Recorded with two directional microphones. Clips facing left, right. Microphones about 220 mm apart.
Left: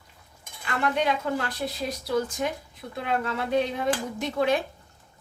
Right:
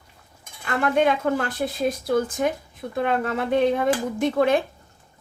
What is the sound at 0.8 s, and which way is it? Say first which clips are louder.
A woman's voice: right 5 dB; 50° right (ahead or behind).